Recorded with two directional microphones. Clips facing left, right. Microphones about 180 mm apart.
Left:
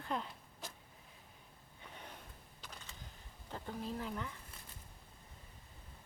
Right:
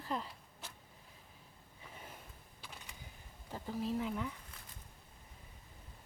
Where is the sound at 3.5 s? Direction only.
10° right (ahead or behind).